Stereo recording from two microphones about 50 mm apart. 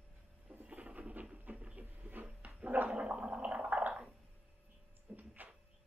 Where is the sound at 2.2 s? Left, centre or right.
Right.